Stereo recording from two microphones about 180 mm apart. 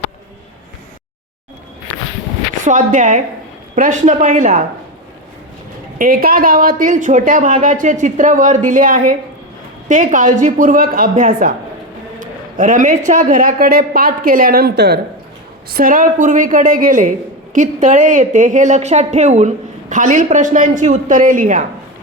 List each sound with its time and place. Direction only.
2.6 s a man's voice: 45° right (ahead or behind)
6.0 s a man's voice: 55° right (ahead or behind)
12.2 s a sound: 45° right (ahead or behind)
13.1 s a man's voice: 45° right (ahead or behind); by 15.0 s 65° right (ahead or behind)
15.7 s a man's voice: 50° right (ahead or behind)